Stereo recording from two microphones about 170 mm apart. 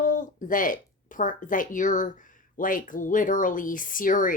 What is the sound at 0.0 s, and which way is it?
A woman's voice, 50° left (ahead or behind).